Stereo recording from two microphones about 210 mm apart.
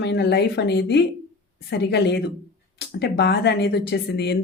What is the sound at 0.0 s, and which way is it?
Speech, 50° left (ahead or behind).